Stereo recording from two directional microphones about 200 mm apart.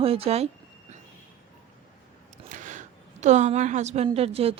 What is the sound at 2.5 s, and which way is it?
A woman's voice, 40° right (ahead or behind).